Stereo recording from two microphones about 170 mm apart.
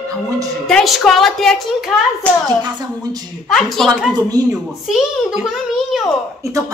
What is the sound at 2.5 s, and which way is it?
Speech, 25° right (ahead or behind).